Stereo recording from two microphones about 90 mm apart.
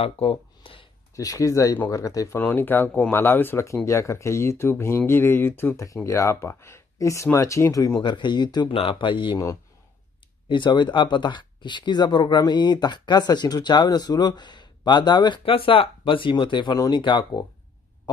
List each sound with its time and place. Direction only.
0.0 s speech: 90° left
1.1 s speech: 40° left (ahead or behind)
2.3 s speech: 20° left (ahead or behind)
3.6 s speech: 35° left (ahead or behind)
8.0 s speech: 60° left (ahead or behind)
8.7 s speech: 65° left (ahead or behind)
10.5 s speech: 60° left (ahead or behind)
16.7 s speech: 45° left (ahead or behind)
17.0 s speech: 65° left (ahead or behind)